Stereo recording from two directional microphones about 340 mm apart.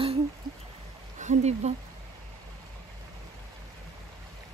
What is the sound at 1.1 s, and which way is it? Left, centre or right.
Speech, centre.